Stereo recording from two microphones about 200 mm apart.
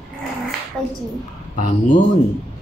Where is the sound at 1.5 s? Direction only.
40° left (ahead or behind).